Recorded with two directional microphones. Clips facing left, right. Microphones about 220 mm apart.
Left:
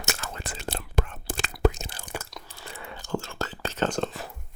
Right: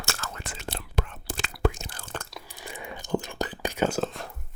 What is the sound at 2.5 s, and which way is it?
Whispering, 15° right (ahead or behind).